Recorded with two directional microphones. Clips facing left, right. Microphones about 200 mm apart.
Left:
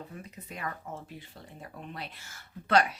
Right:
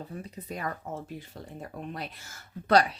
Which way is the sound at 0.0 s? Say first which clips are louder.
Right 4 dB; 35° right (ahead or behind).